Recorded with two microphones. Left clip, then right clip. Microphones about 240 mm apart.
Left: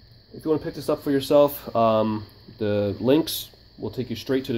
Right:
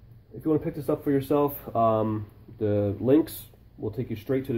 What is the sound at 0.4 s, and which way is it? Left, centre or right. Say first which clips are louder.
Speech: left 2 dB; left.